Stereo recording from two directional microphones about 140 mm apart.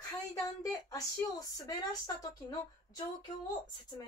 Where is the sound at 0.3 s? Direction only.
25° left (ahead or behind).